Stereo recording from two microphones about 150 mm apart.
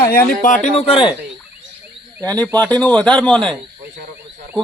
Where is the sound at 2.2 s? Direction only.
10° left (ahead or behind).